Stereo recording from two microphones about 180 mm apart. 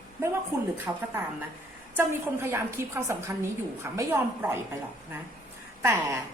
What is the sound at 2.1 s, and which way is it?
A woman's voice, 15° right (ahead or behind).